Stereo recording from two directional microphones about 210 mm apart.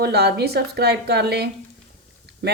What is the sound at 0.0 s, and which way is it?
Speech, 50° right (ahead or behind).